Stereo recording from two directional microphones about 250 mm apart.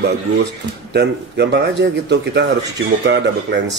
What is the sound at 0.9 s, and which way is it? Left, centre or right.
Speech, right.